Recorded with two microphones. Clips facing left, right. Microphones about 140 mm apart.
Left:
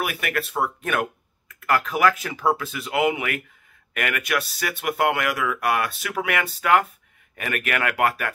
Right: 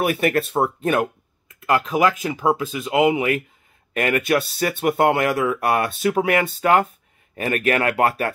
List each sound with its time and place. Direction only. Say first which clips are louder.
0.0 s speech: right 7 dB; 30° right (ahead or behind)